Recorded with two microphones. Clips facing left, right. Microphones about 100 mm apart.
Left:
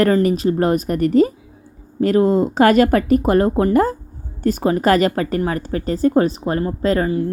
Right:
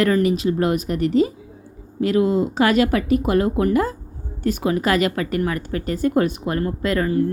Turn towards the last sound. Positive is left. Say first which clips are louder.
# left 2 dB
turn(degrees=25)  # may be behind; listen again after turning